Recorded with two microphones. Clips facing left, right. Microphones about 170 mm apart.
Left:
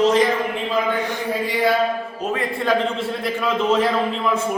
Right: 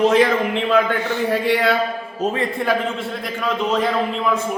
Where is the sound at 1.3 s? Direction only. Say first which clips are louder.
Right 3 dB; 75° right (ahead or behind).